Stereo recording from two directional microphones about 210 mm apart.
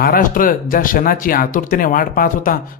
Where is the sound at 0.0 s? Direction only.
45° left (ahead or behind).